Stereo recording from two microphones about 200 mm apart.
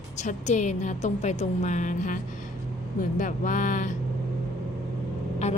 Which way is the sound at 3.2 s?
40° left (ahead or behind).